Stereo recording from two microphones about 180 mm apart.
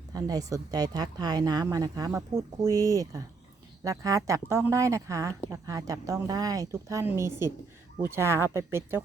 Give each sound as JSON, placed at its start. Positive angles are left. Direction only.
{"t": 0.1, "sound": "speech", "side_deg": -20}